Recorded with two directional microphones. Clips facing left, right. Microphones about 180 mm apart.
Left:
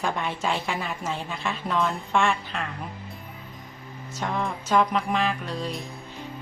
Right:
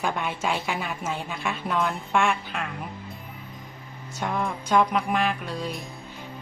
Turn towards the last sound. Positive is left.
turn(degrees=0)  # may be behind; listen again after turning